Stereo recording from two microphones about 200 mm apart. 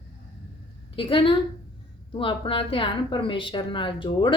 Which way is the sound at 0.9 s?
25° left (ahead or behind).